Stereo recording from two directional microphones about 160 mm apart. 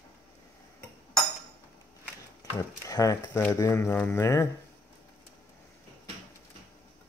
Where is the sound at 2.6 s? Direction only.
20° left (ahead or behind).